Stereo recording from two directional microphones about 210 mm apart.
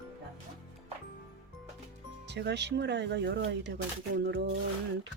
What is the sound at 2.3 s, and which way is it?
Speech, 55° right (ahead or behind).